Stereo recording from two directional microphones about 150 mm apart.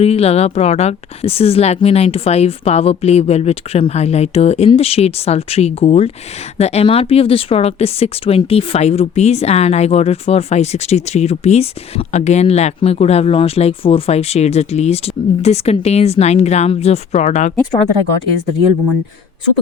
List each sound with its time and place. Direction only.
0.0 s speech: 45° left (ahead or behind)